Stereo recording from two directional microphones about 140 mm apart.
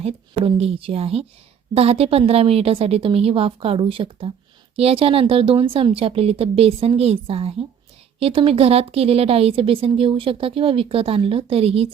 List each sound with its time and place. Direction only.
0.0 s a woman's voice: 45° right (ahead or behind)